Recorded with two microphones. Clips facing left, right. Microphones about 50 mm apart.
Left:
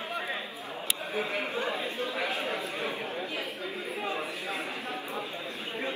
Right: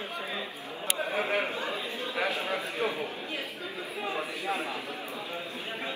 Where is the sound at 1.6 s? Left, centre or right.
Left.